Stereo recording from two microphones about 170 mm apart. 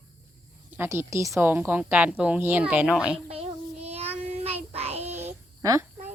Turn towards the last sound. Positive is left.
turn(degrees=-20)  # may be behind; listen again after turning